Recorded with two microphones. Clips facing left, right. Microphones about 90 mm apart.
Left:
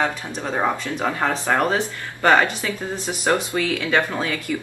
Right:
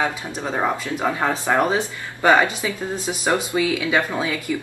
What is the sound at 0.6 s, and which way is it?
A woman's voice, 5° right (ahead or behind).